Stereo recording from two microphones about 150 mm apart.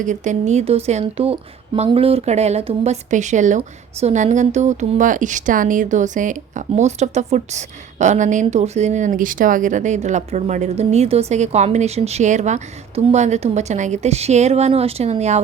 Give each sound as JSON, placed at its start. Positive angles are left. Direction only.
{"t": 0.0, "sound": "a woman's voice", "side_deg": -55}